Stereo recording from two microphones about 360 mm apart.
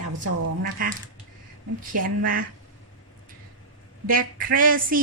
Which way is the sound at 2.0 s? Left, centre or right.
Right.